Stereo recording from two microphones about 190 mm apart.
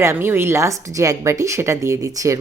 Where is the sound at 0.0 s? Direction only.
10° right (ahead or behind).